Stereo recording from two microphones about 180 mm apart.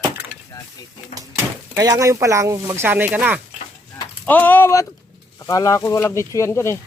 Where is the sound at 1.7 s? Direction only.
20° right (ahead or behind).